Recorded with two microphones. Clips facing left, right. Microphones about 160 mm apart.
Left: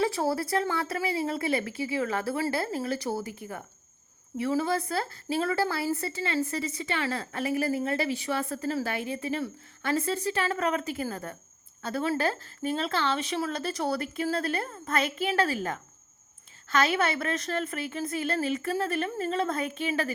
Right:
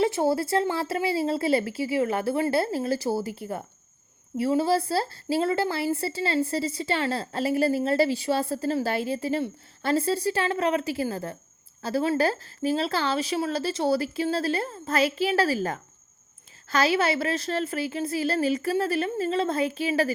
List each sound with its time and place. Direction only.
0.0 s a woman's voice: 25° right (ahead or behind)
4.4 s a woman's voice: 30° right (ahead or behind)